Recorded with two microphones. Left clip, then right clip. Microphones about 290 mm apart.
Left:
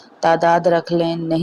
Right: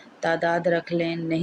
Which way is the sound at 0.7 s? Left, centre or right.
Centre.